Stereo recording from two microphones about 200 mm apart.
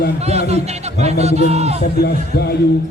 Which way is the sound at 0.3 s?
30° right (ahead or behind).